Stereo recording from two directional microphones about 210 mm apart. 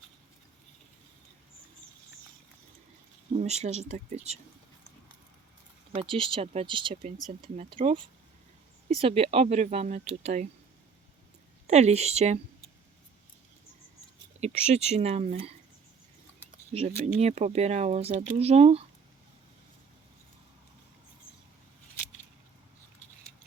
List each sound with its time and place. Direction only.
3.3 s speech: 30° right (ahead or behind)
5.9 s speech: 25° right (ahead or behind)
11.7 s speech: 30° right (ahead or behind)
14.4 s speech: 30° right (ahead or behind)
17.2 s speech: 30° right (ahead or behind)